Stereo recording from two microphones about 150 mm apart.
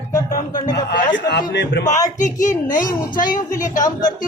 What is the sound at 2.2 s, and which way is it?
A woman's voice, 55° left (ahead or behind).